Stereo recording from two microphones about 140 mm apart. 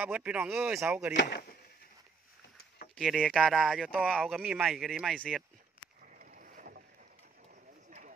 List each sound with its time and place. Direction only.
0.0 s speech: 10° right (ahead or behind)
3.0 s speech: centre (ahead or behind)
6.1 s boat: 75° right (ahead or behind)